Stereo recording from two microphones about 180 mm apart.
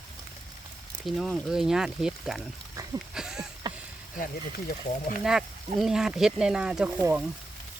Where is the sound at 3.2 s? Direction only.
5° right (ahead or behind).